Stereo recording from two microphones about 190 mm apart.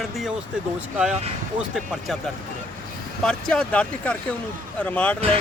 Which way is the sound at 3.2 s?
5° left (ahead or behind).